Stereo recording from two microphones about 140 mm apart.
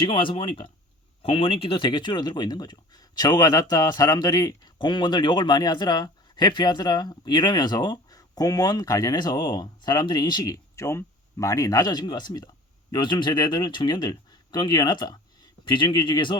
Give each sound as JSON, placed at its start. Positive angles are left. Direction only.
{"t": 0.1, "sound": "speech", "side_deg": 35}